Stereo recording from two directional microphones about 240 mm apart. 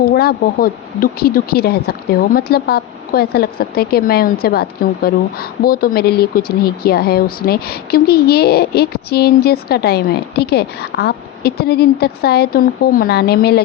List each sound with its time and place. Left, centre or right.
0.0 s speech: left